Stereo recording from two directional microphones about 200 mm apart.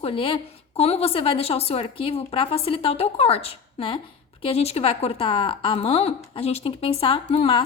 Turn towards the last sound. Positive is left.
turn(degrees=25)  # may be behind; listen again after turning